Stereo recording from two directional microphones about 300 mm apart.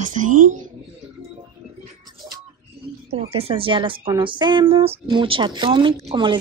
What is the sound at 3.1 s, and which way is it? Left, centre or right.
Speech, centre.